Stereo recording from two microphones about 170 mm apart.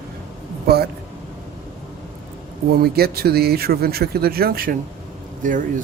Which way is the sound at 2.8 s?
65° right (ahead or behind).